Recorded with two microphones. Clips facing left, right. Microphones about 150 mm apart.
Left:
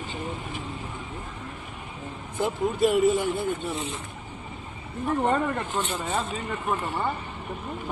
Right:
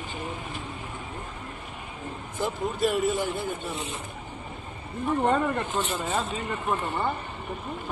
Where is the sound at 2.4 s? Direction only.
20° left (ahead or behind).